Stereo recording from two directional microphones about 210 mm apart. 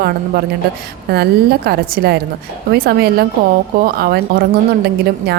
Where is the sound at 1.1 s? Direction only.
50° right (ahead or behind).